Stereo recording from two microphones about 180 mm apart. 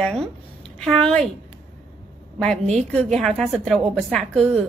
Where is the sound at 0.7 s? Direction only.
5° left (ahead or behind).